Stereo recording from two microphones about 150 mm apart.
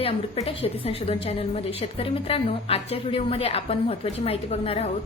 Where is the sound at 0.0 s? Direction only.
40° left (ahead or behind).